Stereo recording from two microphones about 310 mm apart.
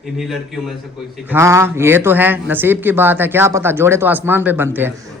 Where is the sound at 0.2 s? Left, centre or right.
Centre.